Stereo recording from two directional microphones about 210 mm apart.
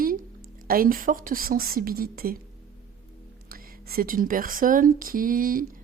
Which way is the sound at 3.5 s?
45° right (ahead or behind).